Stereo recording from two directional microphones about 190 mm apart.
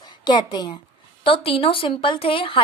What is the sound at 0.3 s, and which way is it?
A woman's voice, 20° left (ahead or behind).